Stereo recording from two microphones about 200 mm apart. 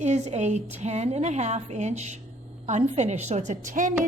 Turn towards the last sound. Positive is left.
turn(degrees=-40)  # may be behind; listen again after turning